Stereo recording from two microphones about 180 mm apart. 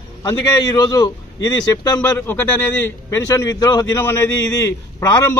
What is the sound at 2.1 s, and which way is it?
A man's voice, 10° left (ahead or behind).